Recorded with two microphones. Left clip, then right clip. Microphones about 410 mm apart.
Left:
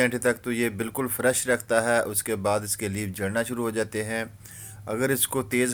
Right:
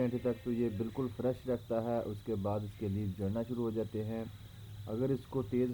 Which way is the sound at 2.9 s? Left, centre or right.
Centre.